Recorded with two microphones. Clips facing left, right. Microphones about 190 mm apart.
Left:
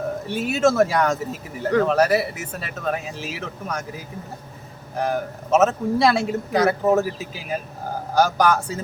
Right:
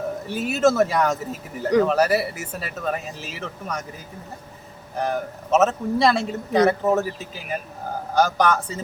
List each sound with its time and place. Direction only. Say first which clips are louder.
0.3 s speech: even; centre (ahead or behind)
8.1 s speech: left 1 dB; 5° left (ahead or behind)